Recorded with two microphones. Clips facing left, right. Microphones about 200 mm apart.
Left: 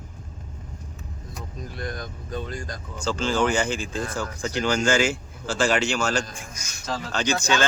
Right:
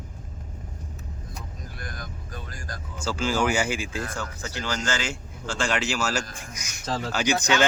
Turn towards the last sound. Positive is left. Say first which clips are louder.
# even
turn(degrees=-20)  # may be behind; listen again after turning